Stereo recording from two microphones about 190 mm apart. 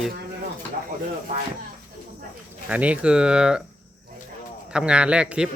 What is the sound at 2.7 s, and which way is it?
Speech, 5° right (ahead or behind).